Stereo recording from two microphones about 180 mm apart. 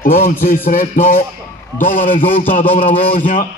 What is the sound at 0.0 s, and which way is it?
A man's voice, 50° left (ahead or behind).